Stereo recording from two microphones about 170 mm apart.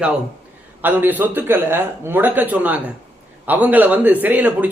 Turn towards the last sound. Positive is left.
turn(degrees=-10)  # may be behind; listen again after turning